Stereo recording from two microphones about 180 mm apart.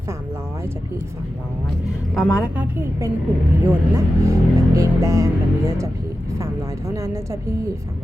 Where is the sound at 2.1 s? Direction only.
5° right (ahead or behind).